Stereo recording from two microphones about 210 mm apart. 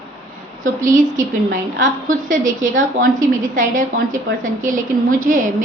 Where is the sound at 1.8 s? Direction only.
40° right (ahead or behind).